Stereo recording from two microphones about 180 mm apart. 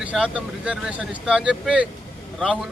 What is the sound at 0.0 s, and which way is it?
Speech, 5° right (ahead or behind).